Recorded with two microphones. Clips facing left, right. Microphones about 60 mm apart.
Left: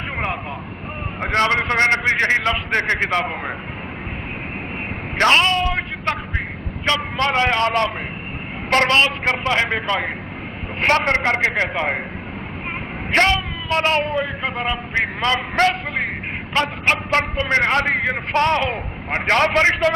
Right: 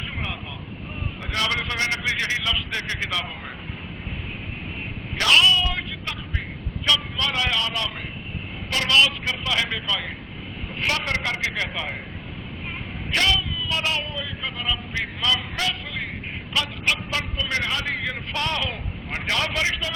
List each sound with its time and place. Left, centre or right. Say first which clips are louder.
1.2 s speech: left 8 dB; left
5.1 s a sound: left 3 dB; left
6.8 s a man's voice: left 5 dB; left
13.1 s speech: left 6 dB; left